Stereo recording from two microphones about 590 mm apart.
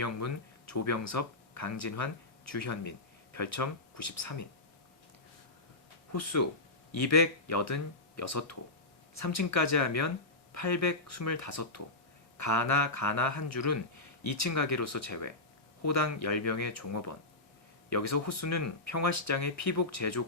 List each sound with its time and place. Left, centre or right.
0.7 s speech: left
6.1 s speech: left